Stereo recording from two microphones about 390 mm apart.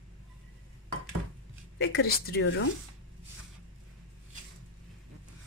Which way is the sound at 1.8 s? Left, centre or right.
Left.